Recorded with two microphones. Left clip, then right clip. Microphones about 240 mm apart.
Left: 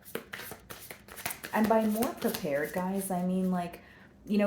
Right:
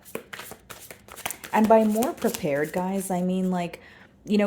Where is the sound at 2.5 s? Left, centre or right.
Right.